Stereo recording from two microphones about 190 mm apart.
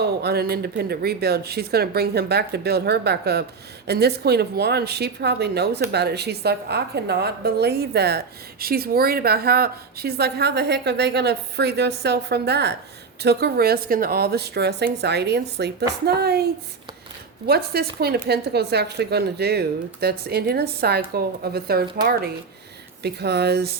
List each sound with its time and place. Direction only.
0.2 s a woman's voice: 60° right (ahead or behind)
17.4 s a woman's voice: 60° right (ahead or behind)
23.0 s a woman's voice: 60° right (ahead or behind)